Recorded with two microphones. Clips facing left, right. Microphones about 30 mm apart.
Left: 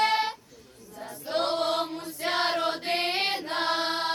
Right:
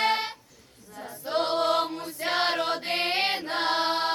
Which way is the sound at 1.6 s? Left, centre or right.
Centre.